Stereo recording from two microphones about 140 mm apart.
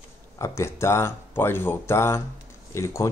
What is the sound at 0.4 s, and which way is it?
Speech, 20° left (ahead or behind).